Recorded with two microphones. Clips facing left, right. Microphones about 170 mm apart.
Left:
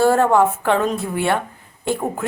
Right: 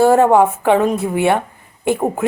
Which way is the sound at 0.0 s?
15° right (ahead or behind).